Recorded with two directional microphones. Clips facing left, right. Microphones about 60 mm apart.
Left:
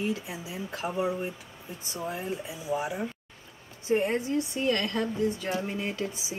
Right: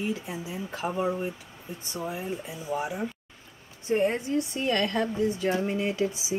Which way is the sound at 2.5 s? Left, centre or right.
Centre.